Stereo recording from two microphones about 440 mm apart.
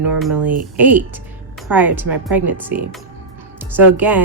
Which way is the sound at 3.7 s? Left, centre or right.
Centre.